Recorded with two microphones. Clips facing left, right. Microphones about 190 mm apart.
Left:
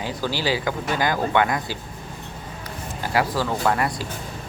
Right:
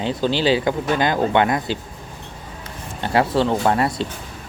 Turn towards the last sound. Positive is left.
turn(degrees=-25)  # may be behind; listen again after turning